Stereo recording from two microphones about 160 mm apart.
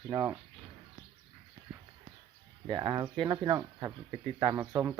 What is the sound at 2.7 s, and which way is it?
Speech, 25° right (ahead or behind).